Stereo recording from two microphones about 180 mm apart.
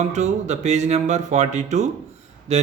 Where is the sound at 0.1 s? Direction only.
40° right (ahead or behind).